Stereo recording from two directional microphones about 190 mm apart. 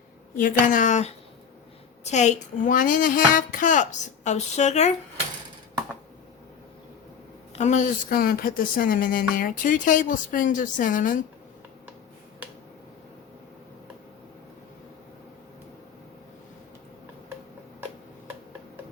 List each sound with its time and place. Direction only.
0.3 s a child's voice: 45° left (ahead or behind)
7.5 s speech: 40° left (ahead or behind)